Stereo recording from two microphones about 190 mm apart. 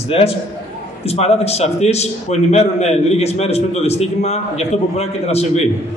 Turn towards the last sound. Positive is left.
turn(degrees=35)  # may be behind; listen again after turning